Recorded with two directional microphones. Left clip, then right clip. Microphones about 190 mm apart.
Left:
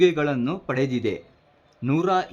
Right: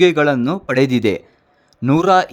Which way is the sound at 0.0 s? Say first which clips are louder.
Right 7 dB; 40° right (ahead or behind).